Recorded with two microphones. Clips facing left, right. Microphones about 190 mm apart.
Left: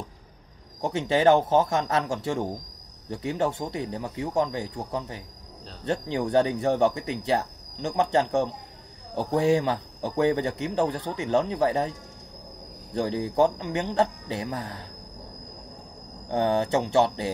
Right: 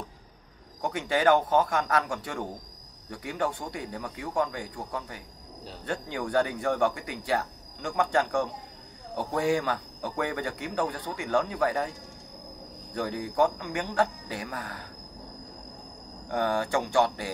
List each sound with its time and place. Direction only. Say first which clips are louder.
0.7 s speech: left 4 dB; 25° left (ahead or behind)
12.9 s speech: left 4 dB; 25° left (ahead or behind)
16.3 s speech: left 4 dB; 25° left (ahead or behind)